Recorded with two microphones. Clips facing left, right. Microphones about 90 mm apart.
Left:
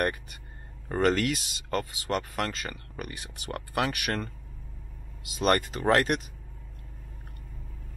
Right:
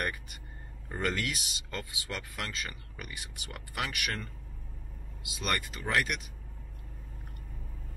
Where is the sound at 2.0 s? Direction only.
50° left (ahead or behind).